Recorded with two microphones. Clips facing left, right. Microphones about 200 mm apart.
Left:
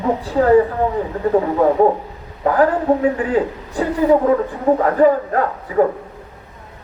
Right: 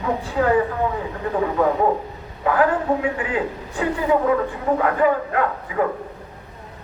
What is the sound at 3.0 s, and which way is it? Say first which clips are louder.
Speech: left 6 dB; 35° left (ahead or behind).